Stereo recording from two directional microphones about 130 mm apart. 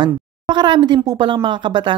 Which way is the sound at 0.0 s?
35° right (ahead or behind).